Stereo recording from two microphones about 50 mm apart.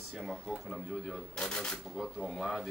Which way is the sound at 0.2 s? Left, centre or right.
Centre.